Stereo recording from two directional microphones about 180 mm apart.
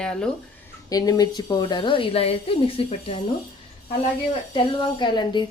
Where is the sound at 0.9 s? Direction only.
20° left (ahead or behind).